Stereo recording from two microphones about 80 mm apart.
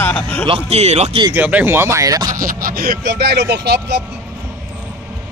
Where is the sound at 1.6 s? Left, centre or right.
Right.